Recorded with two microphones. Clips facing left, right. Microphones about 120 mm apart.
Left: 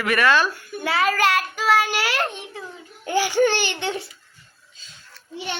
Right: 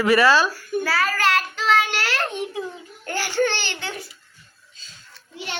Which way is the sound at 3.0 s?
15° left (ahead or behind).